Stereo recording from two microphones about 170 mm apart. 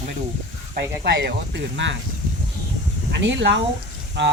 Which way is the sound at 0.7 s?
75° right (ahead or behind).